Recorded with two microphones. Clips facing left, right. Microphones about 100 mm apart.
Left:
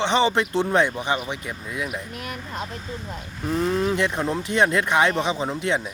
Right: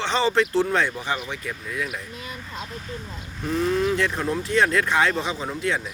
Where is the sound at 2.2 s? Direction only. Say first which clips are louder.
Left 4 dB; 65° left (ahead or behind).